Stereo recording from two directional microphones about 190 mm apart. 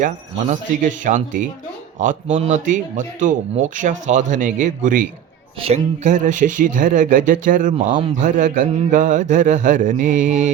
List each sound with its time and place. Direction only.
0.0 s speech: 40° right (ahead or behind)
5.5 s speech: 30° right (ahead or behind)